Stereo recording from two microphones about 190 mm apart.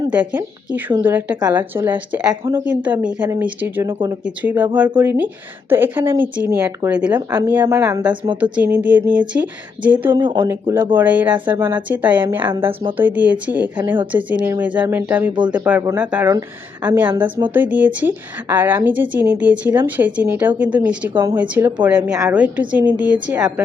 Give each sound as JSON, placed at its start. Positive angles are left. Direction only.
{"t": 0.1, "sound": "a woman's voice", "side_deg": -10}
{"t": 7.3, "sound": "speech", "side_deg": -20}
{"t": 7.5, "sound": "a woman's voice", "side_deg": -10}
{"t": 8.1, "sound": "speech", "side_deg": -25}
{"t": 8.5, "sound": "a woman's voice", "side_deg": -10}
{"t": 10.2, "sound": "speech", "side_deg": -25}
{"t": 10.5, "sound": "a woman's voice", "side_deg": -15}
{"t": 12.4, "sound": "speech", "side_deg": -25}
{"t": 13.0, "sound": "a woman's voice", "side_deg": -10}
{"t": 21.1, "sound": "speech", "side_deg": -25}
{"t": 21.3, "sound": "a woman's voice", "side_deg": -10}